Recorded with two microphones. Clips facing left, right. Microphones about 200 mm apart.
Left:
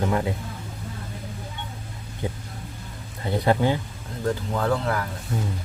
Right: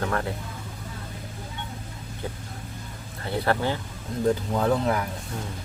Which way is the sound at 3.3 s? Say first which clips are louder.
Left 4 dB; 15° left (ahead or behind).